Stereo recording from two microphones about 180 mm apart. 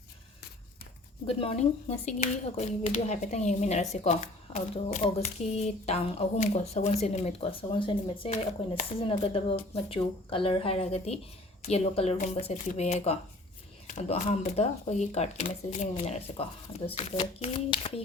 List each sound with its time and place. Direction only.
1.3 s a woman's voice: 30° left (ahead or behind)